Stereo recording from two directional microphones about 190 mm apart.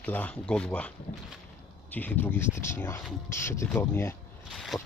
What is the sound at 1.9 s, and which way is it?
Speech, 10° left (ahead or behind).